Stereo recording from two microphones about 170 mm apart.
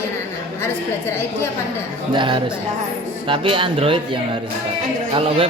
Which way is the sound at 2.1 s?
30° right (ahead or behind).